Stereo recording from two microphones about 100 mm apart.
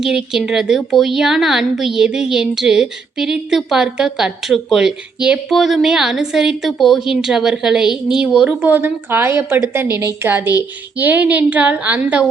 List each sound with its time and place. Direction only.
0.0 s a woman's voice: 5° right (ahead or behind)